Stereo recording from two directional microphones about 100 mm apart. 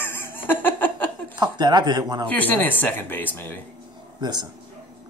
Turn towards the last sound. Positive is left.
turn(degrees=-45)  # may be behind; listen again after turning